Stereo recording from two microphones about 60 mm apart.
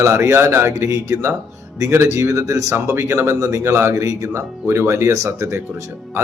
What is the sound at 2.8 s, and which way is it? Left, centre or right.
Speech, right.